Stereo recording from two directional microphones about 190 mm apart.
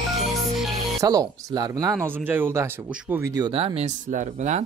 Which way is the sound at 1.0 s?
20° right (ahead or behind).